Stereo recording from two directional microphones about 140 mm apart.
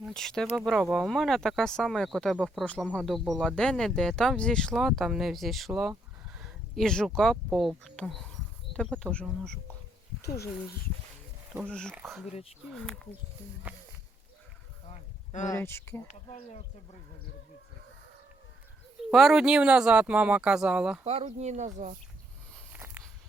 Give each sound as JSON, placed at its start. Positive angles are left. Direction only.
{"t": 0.0, "sound": "speech", "side_deg": 5}
{"t": 10.2, "sound": "speech", "side_deg": 20}
{"t": 11.7, "sound": "speech", "side_deg": 5}
{"t": 14.8, "sound": "a sound", "side_deg": 60}
{"t": 15.4, "sound": "speech", "side_deg": 15}
{"t": 16.0, "sound": "speech", "side_deg": 60}
{"t": 19.1, "sound": "speech", "side_deg": 0}
{"t": 21.0, "sound": "speech", "side_deg": -50}
{"t": 22.7, "sound": "a sound", "side_deg": -15}